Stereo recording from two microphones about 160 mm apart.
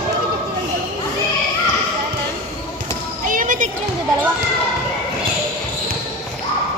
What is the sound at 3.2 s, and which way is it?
Children playing, 60° right (ahead or behind).